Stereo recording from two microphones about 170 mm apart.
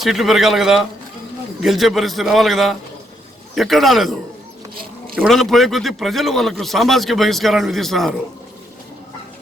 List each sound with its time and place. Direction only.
0.0 s a man's voice: centre (ahead or behind)
4.7 s a sound: 60° right (ahead or behind)
5.1 s a man's voice: centre (ahead or behind)